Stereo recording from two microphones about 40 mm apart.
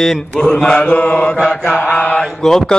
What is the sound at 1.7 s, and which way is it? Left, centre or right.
Mantra, left.